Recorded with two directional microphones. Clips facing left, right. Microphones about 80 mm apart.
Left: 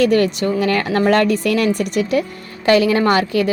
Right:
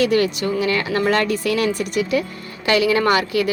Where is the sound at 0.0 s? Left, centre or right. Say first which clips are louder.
Left 3 dB; left.